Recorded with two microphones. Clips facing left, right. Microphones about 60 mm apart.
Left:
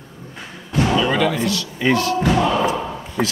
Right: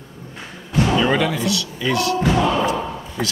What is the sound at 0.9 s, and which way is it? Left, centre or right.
Speech, centre.